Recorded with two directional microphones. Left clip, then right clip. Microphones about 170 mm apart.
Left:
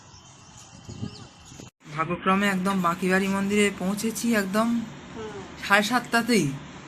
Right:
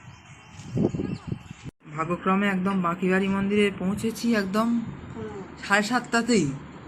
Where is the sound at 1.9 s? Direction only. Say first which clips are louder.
Left 1 dB; 10° right (ahead or behind).